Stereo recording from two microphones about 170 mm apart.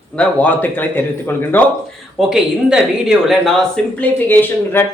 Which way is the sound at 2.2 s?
5° right (ahead or behind).